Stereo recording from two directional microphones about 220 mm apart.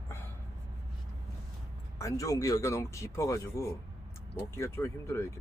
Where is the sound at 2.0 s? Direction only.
15° left (ahead or behind).